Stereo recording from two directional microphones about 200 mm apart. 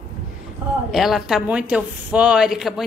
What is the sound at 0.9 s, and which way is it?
A woman's voice, centre (ahead or behind).